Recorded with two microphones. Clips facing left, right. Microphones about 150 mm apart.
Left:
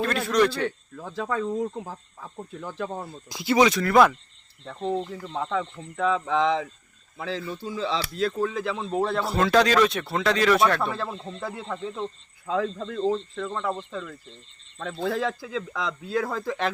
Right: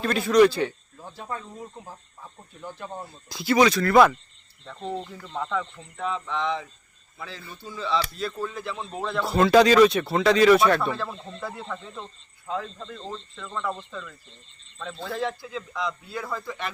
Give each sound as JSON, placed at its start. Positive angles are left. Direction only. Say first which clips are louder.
{"t": 0.0, "sound": "speech", "louder": "right 4 dB", "side_deg": 0}
{"t": 0.9, "sound": "speech", "louder": "left 7 dB", "side_deg": 90}
{"t": 3.2, "sound": "speech", "louder": "even", "side_deg": 20}
{"t": 6.0, "sound": "speech", "louder": "left 6 dB", "side_deg": 90}
{"t": 9.2, "sound": "speech", "louder": "right 6 dB", "side_deg": 0}
{"t": 11.3, "sound": "speech", "louder": "left 1 dB", "side_deg": 30}
{"t": 12.5, "sound": "speech", "louder": "left 5 dB", "side_deg": 90}
{"t": 13.0, "sound": "speech", "louder": "left 15 dB", "side_deg": 55}
{"t": 13.5, "sound": "speech", "louder": "even", "side_deg": 25}
{"t": 15.0, "sound": "speech", "louder": "left 3 dB", "side_deg": 90}